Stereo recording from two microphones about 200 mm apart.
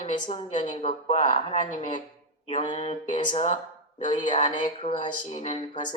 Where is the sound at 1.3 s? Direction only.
40° left (ahead or behind).